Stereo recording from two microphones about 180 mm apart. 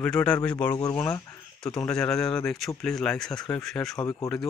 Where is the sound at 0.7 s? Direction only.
20° left (ahead or behind).